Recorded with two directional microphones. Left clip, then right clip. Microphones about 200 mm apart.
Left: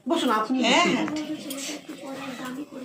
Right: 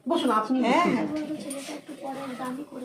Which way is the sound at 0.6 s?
45° right (ahead or behind).